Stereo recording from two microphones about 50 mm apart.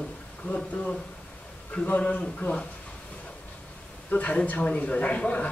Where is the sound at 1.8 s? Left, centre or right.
Left.